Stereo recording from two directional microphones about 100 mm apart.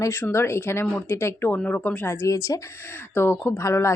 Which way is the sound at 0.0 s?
25° left (ahead or behind).